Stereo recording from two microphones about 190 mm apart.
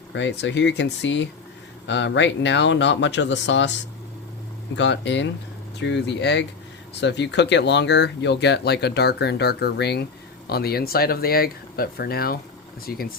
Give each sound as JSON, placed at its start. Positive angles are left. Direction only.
{"t": 0.1, "sound": "speech", "side_deg": 70}
{"t": 4.8, "sound": "speech", "side_deg": 70}